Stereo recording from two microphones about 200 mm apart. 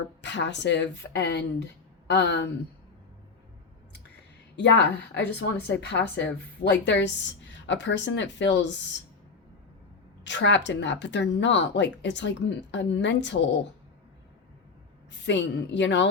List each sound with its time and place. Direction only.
0.2 s a woman's voice: 60° left (ahead or behind)
4.5 s a woman's voice: 60° left (ahead or behind)
10.2 s a woman's voice: 65° left (ahead or behind)
15.3 s a woman's voice: 65° left (ahead or behind)